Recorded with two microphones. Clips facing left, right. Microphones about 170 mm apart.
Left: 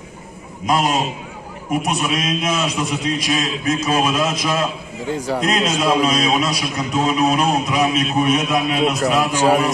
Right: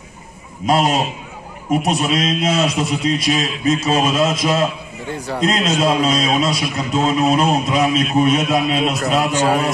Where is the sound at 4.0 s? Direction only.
25° right (ahead or behind).